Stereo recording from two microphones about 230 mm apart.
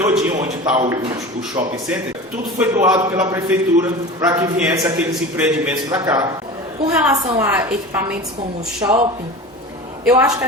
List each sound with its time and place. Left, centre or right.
0.0 s a sound: centre
1.6 s speech: right
2.6 s a man's voice: centre
10.1 s a man's voice: centre